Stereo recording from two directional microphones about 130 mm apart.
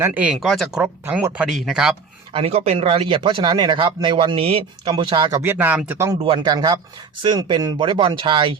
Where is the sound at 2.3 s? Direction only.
50° right (ahead or behind).